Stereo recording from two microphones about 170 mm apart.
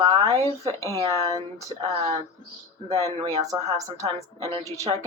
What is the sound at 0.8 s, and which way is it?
Speech, 20° left (ahead or behind).